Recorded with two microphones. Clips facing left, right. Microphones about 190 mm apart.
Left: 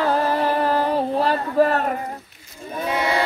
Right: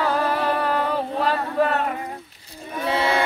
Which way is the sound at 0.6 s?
35° left (ahead or behind).